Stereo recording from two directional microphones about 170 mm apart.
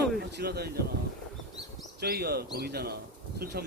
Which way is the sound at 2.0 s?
70° right (ahead or behind).